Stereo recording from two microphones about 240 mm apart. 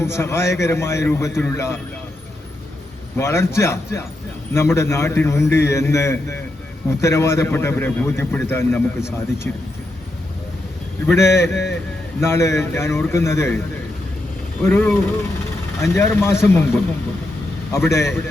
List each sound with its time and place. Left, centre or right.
0.0 s a man's voice: centre
3.2 s a man's voice: centre
11.0 s a man's voice: centre
11.5 s speech: left
12.2 s a man's voice: centre
14.6 s a man's voice: centre